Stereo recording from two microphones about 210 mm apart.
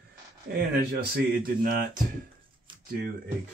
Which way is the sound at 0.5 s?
45° right (ahead or behind).